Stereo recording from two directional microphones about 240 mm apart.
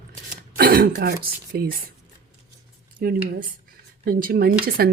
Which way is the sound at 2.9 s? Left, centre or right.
Right.